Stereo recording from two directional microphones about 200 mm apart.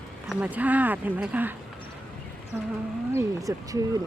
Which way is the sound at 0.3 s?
5° right (ahead or behind).